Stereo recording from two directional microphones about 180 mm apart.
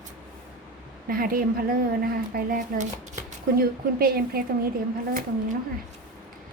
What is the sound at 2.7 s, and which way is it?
A woman's voice, 50° right (ahead or behind).